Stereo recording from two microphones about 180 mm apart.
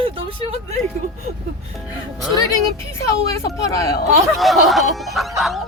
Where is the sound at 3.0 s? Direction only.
15° left (ahead or behind).